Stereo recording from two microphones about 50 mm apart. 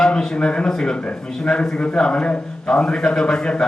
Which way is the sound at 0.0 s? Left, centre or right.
Centre.